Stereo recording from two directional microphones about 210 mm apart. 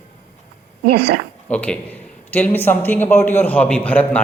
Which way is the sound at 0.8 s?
45° right (ahead or behind).